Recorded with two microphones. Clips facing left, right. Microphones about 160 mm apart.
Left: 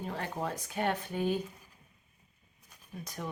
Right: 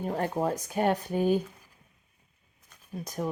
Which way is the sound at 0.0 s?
45° right (ahead or behind).